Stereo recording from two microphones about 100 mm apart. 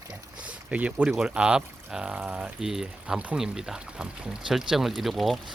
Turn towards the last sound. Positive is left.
turn(degrees=0)  # may be behind; listen again after turning